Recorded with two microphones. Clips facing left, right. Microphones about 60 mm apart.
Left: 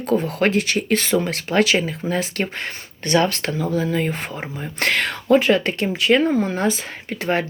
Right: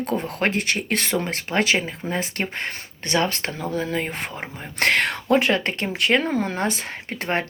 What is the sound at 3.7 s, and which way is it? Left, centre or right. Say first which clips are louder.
Speech: left 3 dB; right.